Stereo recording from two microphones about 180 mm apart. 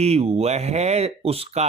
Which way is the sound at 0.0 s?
35° right (ahead or behind).